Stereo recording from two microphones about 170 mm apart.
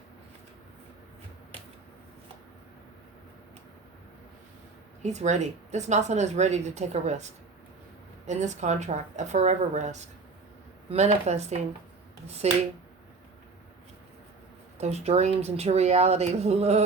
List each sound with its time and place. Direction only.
5.0 s speech: 45° right (ahead or behind)
14.8 s speech: 40° right (ahead or behind)